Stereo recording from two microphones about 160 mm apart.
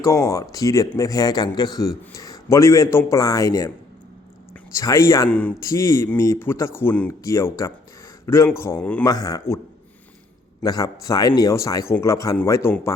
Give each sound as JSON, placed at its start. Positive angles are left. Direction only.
{"t": 0.0, "sound": "speech", "side_deg": 20}
{"t": 4.7, "sound": "speech", "side_deg": 20}
{"t": 5.3, "sound": "a man's voice", "side_deg": 10}
{"t": 9.0, "sound": "speech", "side_deg": 25}
{"t": 10.6, "sound": "a man's voice", "side_deg": 25}